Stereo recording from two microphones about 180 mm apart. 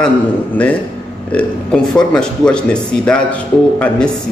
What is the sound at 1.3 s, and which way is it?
A man's voice, 5° left (ahead or behind).